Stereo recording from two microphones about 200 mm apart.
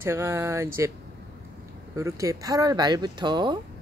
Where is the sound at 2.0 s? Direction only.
15° right (ahead or behind).